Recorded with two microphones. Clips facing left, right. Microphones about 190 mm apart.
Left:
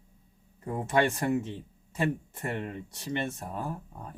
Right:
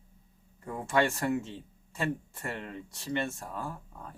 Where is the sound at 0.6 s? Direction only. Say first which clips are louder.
Left 2 dB; 20° left (ahead or behind).